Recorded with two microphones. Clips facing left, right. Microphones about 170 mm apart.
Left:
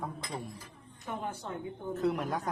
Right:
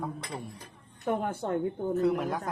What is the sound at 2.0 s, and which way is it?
Speech, centre (ahead or behind).